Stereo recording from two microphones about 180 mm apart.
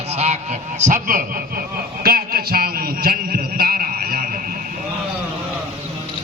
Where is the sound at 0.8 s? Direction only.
45° right (ahead or behind).